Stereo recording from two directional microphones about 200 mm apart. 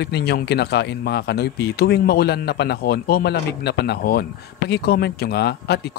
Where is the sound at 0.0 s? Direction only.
55° left (ahead or behind).